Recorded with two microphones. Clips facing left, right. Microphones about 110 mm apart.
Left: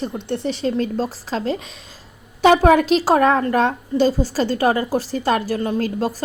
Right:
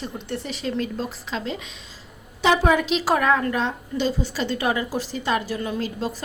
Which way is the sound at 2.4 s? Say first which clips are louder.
Left 6 dB; 55° left (ahead or behind).